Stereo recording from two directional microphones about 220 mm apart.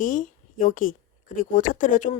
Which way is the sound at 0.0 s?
35° left (ahead or behind).